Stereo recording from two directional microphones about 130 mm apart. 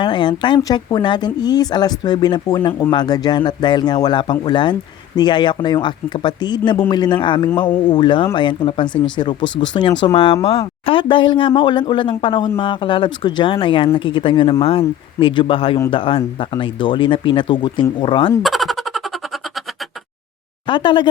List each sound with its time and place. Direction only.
0.0 s speech: 35° left (ahead or behind)
18.4 s a sound: centre (ahead or behind)
20.7 s speech: 35° left (ahead or behind)